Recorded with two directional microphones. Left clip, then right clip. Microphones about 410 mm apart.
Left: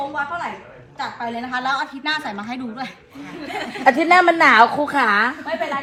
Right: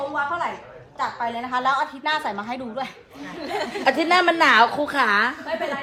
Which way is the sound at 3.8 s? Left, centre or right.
Centre.